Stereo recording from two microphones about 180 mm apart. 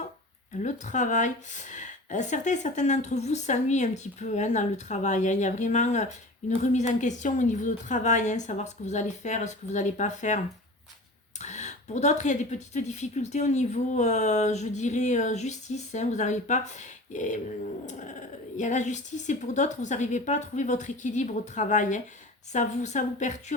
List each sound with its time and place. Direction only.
0.6 s speech: 45° left (ahead or behind)